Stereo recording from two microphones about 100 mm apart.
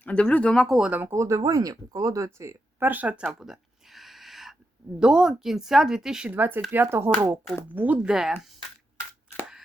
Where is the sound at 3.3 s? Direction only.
5° right (ahead or behind).